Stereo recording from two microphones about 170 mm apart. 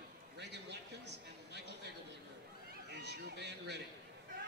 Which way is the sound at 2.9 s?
80° right.